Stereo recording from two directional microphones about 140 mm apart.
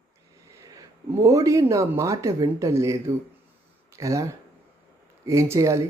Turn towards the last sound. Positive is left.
turn(degrees=-20)  # may be behind; listen again after turning